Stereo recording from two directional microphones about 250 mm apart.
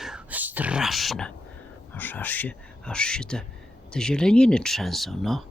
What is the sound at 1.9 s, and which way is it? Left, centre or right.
Speech, centre.